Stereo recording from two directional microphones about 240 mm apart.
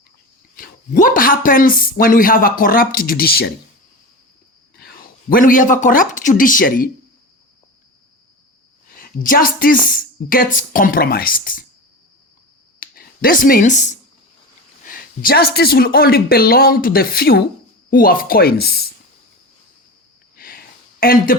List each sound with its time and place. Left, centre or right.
0.5 s speech: left
4.8 s speech: left
9.0 s speech: left
12.8 s a sound: left
14.8 s speech: left
20.3 s a sound: left